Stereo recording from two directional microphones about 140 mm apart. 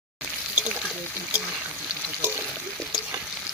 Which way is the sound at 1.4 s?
5° right (ahead or behind).